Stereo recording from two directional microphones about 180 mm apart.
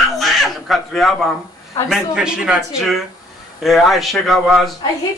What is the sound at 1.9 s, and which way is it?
A man's voice, 5° right (ahead or behind).